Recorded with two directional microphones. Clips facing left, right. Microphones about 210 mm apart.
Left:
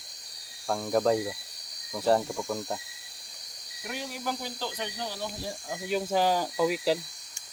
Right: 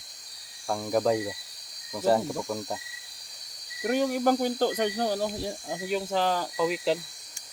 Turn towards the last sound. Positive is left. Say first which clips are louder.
# even
turn(degrees=5)  # may be behind; listen again after turning